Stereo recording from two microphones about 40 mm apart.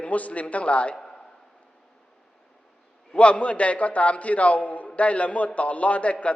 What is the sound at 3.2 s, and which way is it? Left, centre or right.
A man's voice, left.